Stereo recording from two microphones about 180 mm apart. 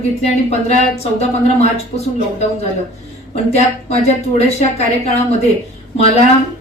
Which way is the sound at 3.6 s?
35° left (ahead or behind).